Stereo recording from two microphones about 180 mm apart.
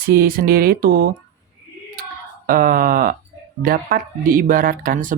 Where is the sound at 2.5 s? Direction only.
55° right (ahead or behind).